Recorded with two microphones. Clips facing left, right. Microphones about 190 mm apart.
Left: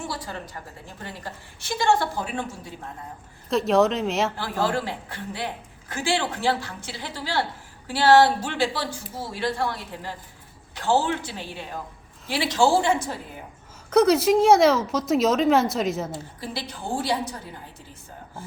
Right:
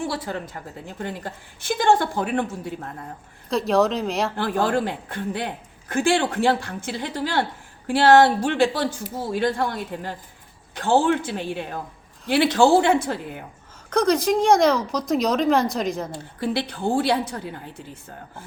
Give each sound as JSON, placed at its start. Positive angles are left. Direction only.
{"t": 1.0, "sound": "a woman's voice", "side_deg": -55}
{"t": 3.5, "sound": "speech", "side_deg": 0}
{"t": 4.4, "sound": "a woman's voice", "side_deg": -55}
{"t": 13.9, "sound": "speech", "side_deg": 5}
{"t": 16.4, "sound": "a woman's voice", "side_deg": -60}